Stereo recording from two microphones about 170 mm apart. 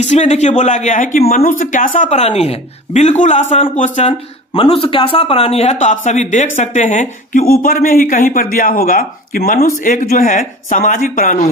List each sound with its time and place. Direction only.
0.0 s speech: 40° left (ahead or behind)
4.5 s speech: 30° left (ahead or behind); by 9.6 s 60° left (ahead or behind)
9.8 s speech: 50° left (ahead or behind)